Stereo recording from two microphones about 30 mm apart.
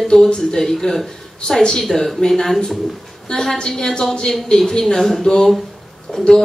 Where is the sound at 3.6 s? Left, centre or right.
Left.